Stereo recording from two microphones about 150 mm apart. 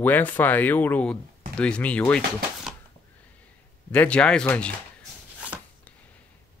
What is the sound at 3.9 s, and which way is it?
Speech, 10° left (ahead or behind).